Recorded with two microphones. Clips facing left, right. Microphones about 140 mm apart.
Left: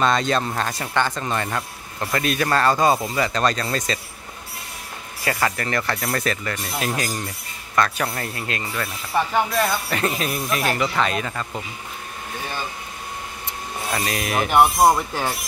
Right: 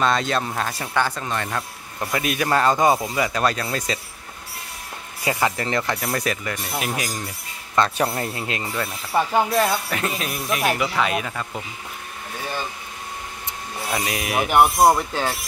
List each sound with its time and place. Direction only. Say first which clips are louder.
0.0 s speech: left 1 dB; centre (ahead or behind)
2.1 s speech: even; 10° right (ahead or behind)
5.2 s speech: right 1 dB; 20° right (ahead or behind)
7.7 s speech: right 1 dB; 20° right (ahead or behind)
9.8 s speech: left 3 dB; centre (ahead or behind)
13.9 s speech: even; 10° right (ahead or behind)